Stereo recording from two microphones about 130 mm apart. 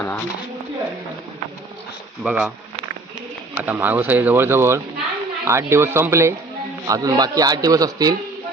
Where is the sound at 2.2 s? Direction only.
10° right (ahead or behind).